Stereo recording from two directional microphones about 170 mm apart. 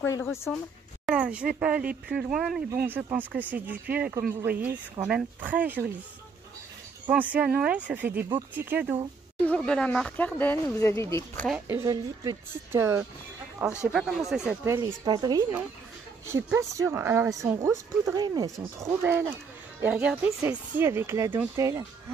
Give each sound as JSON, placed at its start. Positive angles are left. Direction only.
{"t": 0.0, "sound": "speech", "side_deg": 15}
{"t": 1.0, "sound": "speech", "side_deg": -5}
{"t": 7.1, "sound": "speech", "side_deg": -10}
{"t": 9.4, "sound": "speech", "side_deg": 5}
{"t": 11.6, "sound": "speech", "side_deg": -15}
{"t": 14.7, "sound": "speech", "side_deg": -20}